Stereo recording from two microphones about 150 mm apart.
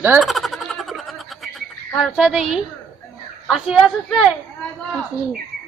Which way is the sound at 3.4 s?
Centre (ahead or behind).